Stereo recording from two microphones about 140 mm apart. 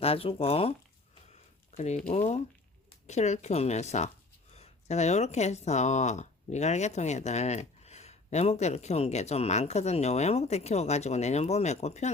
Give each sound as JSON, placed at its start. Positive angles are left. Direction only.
{"t": 0.0, "sound": "speech", "side_deg": 45}
{"t": 1.7, "sound": "speech", "side_deg": 55}